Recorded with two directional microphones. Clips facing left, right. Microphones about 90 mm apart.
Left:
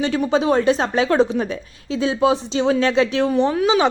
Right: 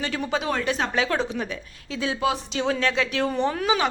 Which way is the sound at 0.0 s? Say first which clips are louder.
Left 8 dB; 30° left (ahead or behind).